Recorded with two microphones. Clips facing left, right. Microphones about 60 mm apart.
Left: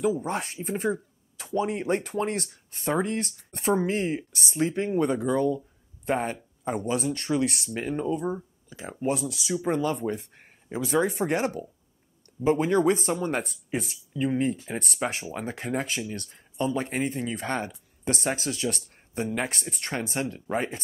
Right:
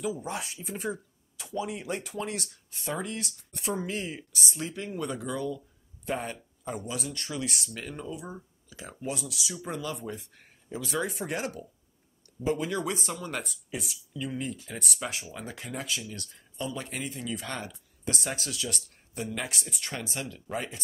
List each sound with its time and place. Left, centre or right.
0.0 s speech: left
8.6 s a sound: left
9.2 s speech: left